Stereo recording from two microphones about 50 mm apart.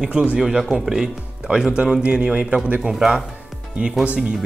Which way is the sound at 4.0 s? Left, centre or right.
Right.